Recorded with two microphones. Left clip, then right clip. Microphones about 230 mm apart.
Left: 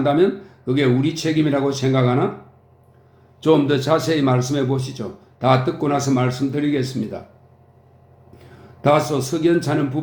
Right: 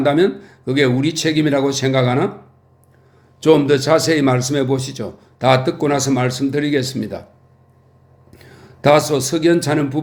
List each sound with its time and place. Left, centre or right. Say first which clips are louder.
0.0 s a man's voice: right 2 dB; right
3.4 s a man's voice: right 4 dB; right
8.8 s a man's voice: right 4 dB; right